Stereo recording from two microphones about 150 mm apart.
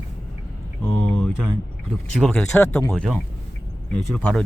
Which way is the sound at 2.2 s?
Centre (ahead or behind).